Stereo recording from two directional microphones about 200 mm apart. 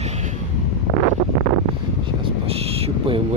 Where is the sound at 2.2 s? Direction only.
30° right (ahead or behind).